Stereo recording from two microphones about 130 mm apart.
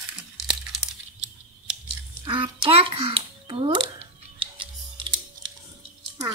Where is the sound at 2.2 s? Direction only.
40° right (ahead or behind).